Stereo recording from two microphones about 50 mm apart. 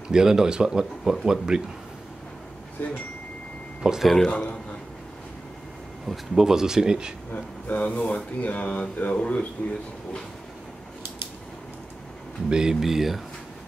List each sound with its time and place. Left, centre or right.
0.1 s speech: centre
2.8 s speech: left
3.8 s speech: centre
4.3 s speech: centre
6.0 s speech: centre
7.3 s speech: left
12.4 s speech: centre
12.8 s speech: centre